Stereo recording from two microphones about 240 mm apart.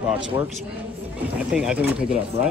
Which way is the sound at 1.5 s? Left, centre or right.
Centre.